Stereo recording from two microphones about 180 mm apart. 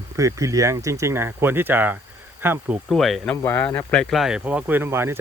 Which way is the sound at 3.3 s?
10° left (ahead or behind).